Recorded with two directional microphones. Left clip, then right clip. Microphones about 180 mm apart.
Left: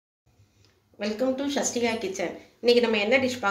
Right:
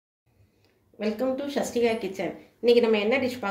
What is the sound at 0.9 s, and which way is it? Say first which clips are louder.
Speech: even; 65° right (ahead or behind).